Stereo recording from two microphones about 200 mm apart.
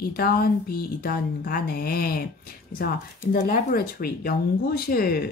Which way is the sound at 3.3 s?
50° left (ahead or behind).